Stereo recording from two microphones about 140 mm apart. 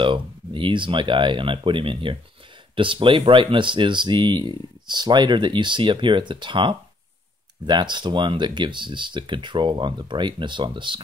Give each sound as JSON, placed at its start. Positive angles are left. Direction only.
{"t": 0.0, "sound": "speech", "side_deg": -35}